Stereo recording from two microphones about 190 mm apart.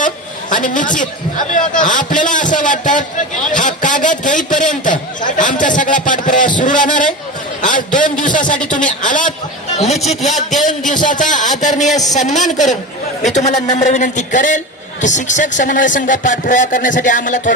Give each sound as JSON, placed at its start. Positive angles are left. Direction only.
{"t": 0.5, "sound": "a man's voice", "side_deg": 45}
{"t": 10.3, "sound": "a man's voice", "side_deg": 0}
{"t": 10.8, "sound": "a man's voice", "side_deg": 40}